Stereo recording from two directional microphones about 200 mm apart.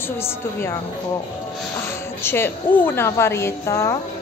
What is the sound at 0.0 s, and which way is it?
Speech, 10° left (ahead or behind).